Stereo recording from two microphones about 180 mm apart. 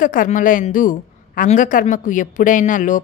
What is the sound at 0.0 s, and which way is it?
A man's voice, 50° left (ahead or behind).